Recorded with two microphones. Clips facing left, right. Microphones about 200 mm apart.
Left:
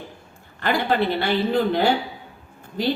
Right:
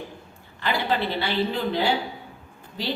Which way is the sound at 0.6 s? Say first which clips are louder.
Left 4 dB; 50° left (ahead or behind).